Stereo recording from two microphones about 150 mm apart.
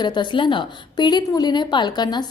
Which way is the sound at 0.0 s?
30° left (ahead or behind).